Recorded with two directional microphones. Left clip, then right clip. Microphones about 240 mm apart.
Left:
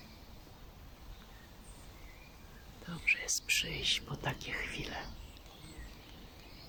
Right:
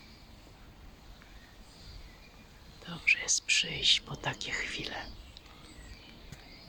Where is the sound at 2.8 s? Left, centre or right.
Centre.